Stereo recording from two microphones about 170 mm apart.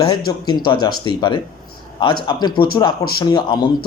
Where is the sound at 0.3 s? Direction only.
25° left (ahead or behind).